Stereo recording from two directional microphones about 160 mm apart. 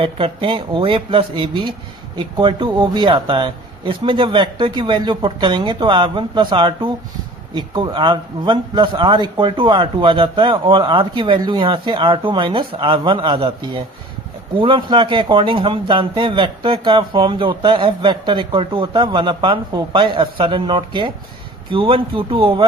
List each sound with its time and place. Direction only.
0.0 s speech: 35° right (ahead or behind)